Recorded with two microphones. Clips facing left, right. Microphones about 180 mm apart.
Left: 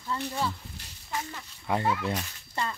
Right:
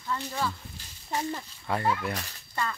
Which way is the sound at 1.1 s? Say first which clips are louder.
Right 5 dB; 35° right (ahead or behind).